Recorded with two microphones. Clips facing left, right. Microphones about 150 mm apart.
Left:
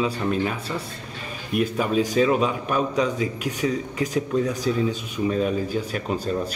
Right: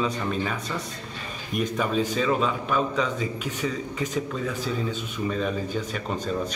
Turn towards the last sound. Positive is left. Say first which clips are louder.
# left 3 dB
turn(degrees=10)  # may be behind; listen again after turning